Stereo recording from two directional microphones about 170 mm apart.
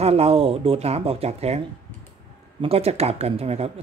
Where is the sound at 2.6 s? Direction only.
35° right (ahead or behind).